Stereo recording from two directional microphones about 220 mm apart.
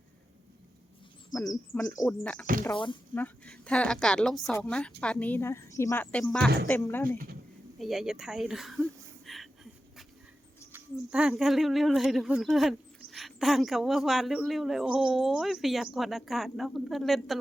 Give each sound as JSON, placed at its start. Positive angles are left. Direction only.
{"t": 1.3, "sound": "speech", "side_deg": 15}
{"t": 2.7, "sound": "speech", "side_deg": 20}
{"t": 3.2, "sound": "speech", "side_deg": 5}
{"t": 7.8, "sound": "speech", "side_deg": 0}
{"t": 10.7, "sound": "speech", "side_deg": -5}